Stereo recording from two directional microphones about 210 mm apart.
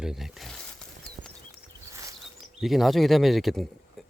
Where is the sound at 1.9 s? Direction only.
15° right (ahead or behind).